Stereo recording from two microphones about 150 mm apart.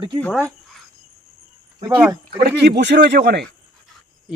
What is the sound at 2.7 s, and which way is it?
Speech, 90° right.